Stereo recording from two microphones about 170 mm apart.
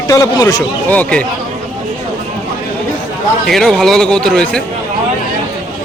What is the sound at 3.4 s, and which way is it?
A man's voice, centre (ahead or behind).